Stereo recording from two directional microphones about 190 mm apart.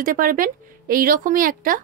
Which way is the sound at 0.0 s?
45° right (ahead or behind).